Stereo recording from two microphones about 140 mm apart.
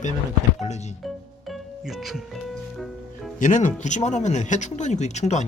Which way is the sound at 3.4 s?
65° left (ahead or behind).